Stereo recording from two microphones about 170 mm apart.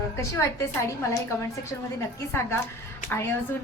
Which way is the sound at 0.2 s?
15° left (ahead or behind).